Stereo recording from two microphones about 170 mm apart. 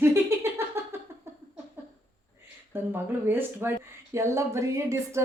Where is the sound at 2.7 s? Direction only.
10° right (ahead or behind).